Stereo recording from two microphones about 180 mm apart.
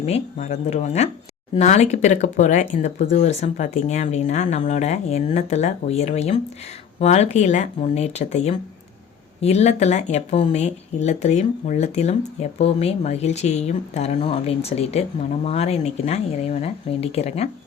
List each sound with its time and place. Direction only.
0.0 s speech: 40° left (ahead or behind)